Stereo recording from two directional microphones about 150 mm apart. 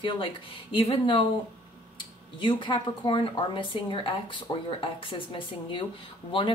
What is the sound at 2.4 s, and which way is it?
A woman's voice, 30° left (ahead or behind).